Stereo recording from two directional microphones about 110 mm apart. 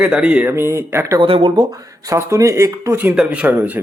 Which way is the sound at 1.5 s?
35° right (ahead or behind).